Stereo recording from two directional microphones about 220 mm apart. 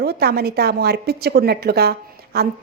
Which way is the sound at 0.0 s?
45° right (ahead or behind).